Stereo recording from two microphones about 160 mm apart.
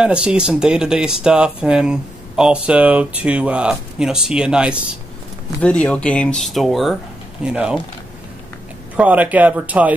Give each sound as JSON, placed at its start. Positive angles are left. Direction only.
{"t": 0.0, "sound": "speech", "side_deg": -5}
{"t": 5.6, "sound": "speech", "side_deg": 5}
{"t": 8.9, "sound": "speech", "side_deg": -10}